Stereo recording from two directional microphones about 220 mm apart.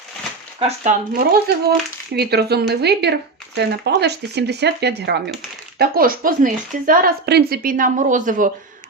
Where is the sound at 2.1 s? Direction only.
45° right (ahead or behind).